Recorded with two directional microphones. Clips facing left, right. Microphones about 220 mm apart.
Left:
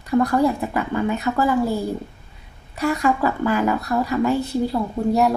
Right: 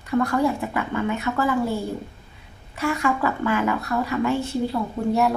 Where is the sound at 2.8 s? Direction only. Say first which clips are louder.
Left 3 dB; 40° left (ahead or behind).